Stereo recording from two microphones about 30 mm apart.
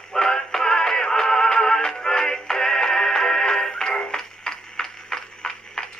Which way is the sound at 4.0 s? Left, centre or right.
Left.